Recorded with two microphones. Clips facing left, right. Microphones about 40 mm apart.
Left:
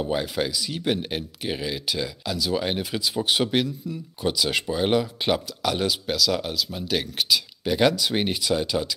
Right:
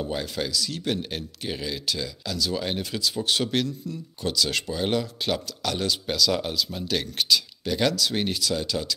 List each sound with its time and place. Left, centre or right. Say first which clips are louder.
0.0 s speech: left 4 dB; centre